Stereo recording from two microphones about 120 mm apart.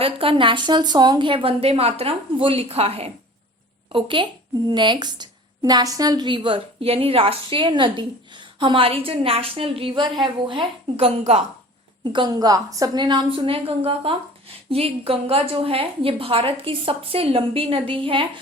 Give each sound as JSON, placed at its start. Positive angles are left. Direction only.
{"t": 0.0, "sound": "a woman's voice", "side_deg": -50}
{"t": 3.9, "sound": "a woman's voice", "side_deg": -45}
{"t": 11.2, "sound": "a woman's voice", "side_deg": -60}
{"t": 12.1, "sound": "a woman's voice", "side_deg": -35}